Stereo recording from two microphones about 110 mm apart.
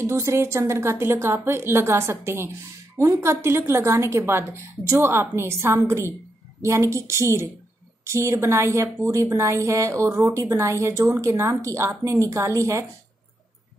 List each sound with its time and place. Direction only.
0.0 s a woman's voice: 25° right (ahead or behind)